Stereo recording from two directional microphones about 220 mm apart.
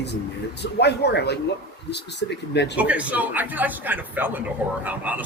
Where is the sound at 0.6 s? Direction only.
50° left (ahead or behind).